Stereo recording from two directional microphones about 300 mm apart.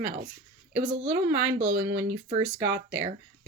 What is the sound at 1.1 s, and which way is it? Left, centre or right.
Speech, centre.